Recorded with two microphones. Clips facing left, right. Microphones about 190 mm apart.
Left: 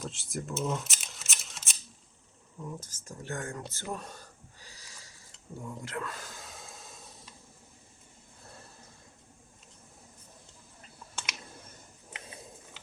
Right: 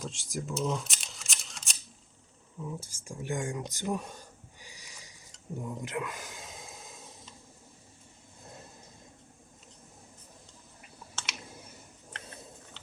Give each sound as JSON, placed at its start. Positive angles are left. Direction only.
{"t": 0.0, "sound": "camera", "side_deg": 0}
{"t": 2.6, "sound": "speech", "side_deg": -5}
{"t": 3.9, "sound": "a sound", "side_deg": -15}
{"t": 5.5, "sound": "speech", "side_deg": -20}
{"t": 8.4, "sound": "vehicle", "side_deg": -20}
{"t": 11.4, "sound": "clicking", "side_deg": -10}
{"t": 12.1, "sound": "a sound", "side_deg": 10}